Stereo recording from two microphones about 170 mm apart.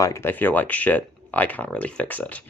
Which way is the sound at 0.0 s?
15° left (ahead or behind).